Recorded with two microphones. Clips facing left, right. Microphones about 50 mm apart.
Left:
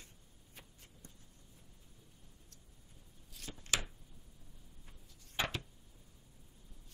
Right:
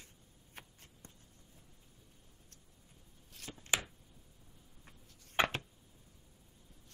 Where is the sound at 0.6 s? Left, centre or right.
Right.